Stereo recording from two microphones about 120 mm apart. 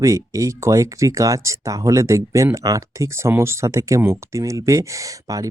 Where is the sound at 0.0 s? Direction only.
25° right (ahead or behind).